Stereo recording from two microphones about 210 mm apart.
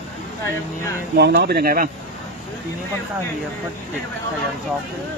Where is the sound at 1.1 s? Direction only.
50° right (ahead or behind).